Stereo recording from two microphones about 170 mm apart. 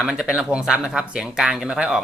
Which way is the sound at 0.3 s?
5° right (ahead or behind).